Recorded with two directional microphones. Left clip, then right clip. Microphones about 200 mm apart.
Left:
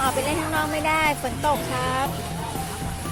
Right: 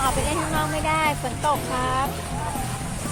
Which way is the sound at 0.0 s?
20° left (ahead or behind).